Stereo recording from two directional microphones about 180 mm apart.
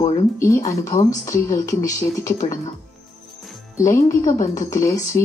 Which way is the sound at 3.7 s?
15° left (ahead or behind).